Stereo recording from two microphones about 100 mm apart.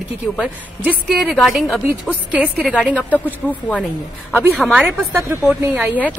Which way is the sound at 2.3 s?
15° right (ahead or behind).